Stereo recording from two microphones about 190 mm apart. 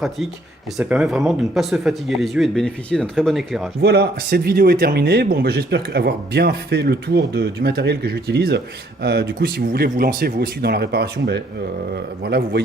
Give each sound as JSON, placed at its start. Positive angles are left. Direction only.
{"t": 0.8, "sound": "speech", "side_deg": -5}
{"t": 3.8, "sound": "speech", "side_deg": -60}